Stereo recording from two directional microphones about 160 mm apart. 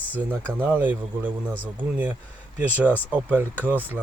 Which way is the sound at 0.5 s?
10° right (ahead or behind).